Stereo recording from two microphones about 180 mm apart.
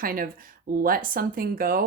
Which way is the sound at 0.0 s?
55° right (ahead or behind).